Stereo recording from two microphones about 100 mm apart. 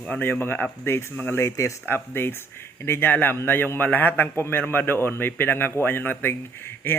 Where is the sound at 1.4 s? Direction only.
30° left (ahead or behind).